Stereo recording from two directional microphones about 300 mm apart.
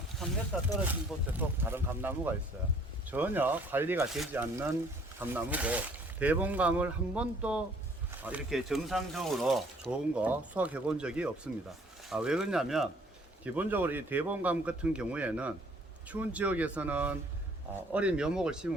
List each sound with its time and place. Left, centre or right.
0.5 s speech: centre